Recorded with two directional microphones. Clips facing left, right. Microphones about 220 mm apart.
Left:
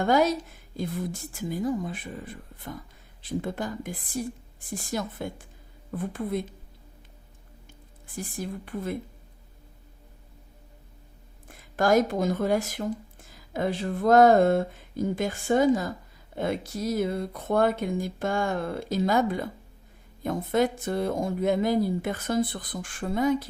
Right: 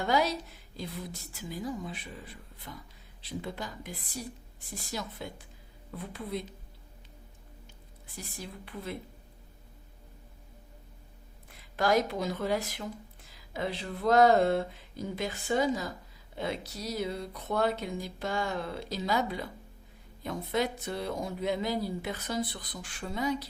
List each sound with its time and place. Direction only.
0.0 s speech: 50° left (ahead or behind)
8.0 s speech: 50° left (ahead or behind)
11.4 s speech: 50° left (ahead or behind)